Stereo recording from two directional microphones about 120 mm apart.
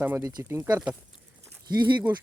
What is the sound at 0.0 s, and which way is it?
Speech, 20° right (ahead or behind).